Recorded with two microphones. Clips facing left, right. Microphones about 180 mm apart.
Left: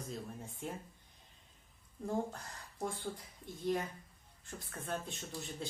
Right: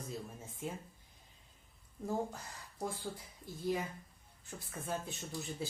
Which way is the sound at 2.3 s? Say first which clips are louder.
Even; 5° right (ahead or behind).